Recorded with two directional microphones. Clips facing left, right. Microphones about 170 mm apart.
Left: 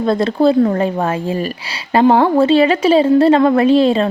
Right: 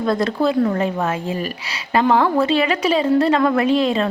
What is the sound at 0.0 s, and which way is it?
A woman's voice, 25° left (ahead or behind).